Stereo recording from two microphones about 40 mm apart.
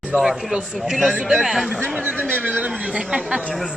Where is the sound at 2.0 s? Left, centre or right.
Right.